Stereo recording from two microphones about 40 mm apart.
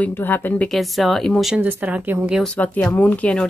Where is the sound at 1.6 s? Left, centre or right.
Right.